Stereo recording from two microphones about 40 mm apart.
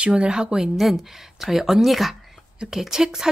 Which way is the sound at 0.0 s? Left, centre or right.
Right.